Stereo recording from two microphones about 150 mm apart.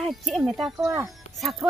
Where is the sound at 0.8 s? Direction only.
20° right (ahead or behind).